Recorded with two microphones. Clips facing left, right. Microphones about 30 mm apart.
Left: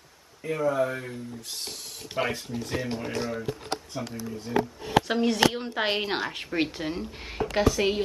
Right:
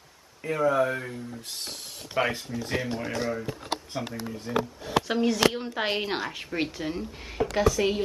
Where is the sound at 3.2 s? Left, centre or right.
Centre.